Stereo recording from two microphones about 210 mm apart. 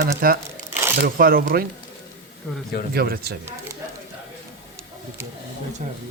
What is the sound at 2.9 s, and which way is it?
Speech, 45° right (ahead or behind).